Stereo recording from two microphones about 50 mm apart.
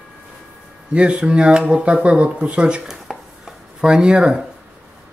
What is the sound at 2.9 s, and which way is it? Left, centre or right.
Chopping, centre.